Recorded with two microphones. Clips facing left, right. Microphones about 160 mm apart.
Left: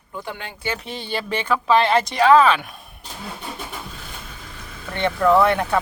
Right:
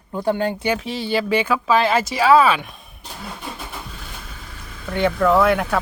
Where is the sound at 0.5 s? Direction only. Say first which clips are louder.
Right 6 dB; 15° right (ahead or behind).